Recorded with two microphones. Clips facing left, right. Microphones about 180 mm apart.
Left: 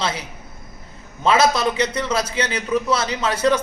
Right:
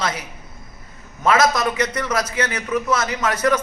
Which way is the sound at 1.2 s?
30° left (ahead or behind).